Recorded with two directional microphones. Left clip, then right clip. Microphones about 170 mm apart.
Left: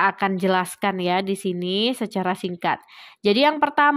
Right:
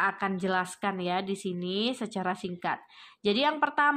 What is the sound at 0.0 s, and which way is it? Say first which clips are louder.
Speech: left 8 dB; 45° left (ahead or behind).